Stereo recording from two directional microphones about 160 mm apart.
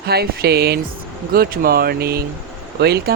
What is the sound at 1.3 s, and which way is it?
Speech, 70° right (ahead or behind).